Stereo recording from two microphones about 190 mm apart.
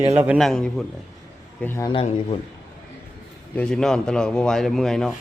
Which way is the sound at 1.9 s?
30° left (ahead or behind).